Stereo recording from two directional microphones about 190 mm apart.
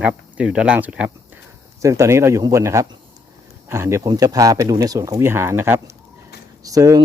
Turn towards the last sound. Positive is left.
turn(degrees=-20)  # may be behind; listen again after turning